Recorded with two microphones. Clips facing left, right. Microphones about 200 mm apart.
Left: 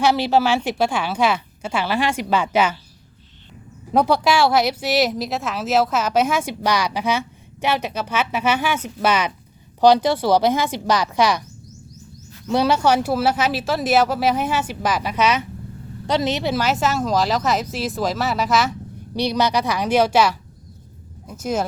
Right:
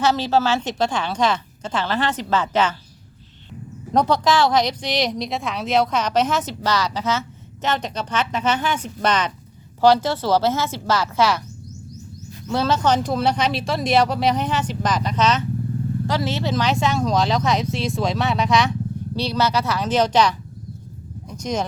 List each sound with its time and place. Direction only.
0.0 s speech: 15° left (ahead or behind)
3.9 s speech: 10° left (ahead or behind)
12.5 s speech: 15° left (ahead or behind)
19.1 s speech: 15° left (ahead or behind)